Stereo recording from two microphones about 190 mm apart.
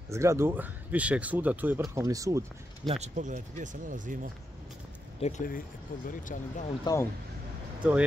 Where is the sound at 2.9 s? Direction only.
40° right (ahead or behind).